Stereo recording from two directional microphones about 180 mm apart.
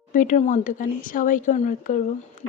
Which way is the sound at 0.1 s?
45° left (ahead or behind).